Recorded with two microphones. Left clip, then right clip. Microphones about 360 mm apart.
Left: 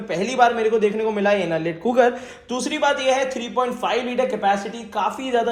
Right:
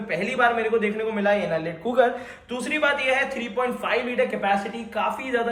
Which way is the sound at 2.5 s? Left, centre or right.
Centre.